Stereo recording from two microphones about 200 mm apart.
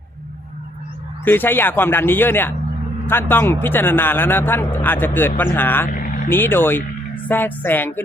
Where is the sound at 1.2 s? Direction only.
10° left (ahead or behind).